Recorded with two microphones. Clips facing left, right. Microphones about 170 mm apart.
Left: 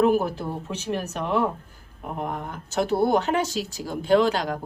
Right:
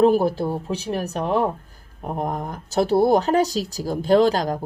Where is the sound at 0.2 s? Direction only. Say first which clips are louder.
Right 6 dB; 35° right (ahead or behind).